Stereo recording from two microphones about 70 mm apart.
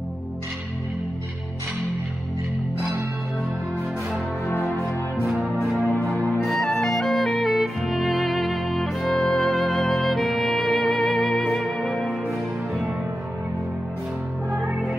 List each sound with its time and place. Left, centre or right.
4.5 s music: left
6.4 s music: centre
14.5 s music: centre